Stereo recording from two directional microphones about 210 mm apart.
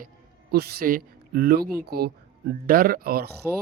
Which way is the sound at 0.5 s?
45° right (ahead or behind).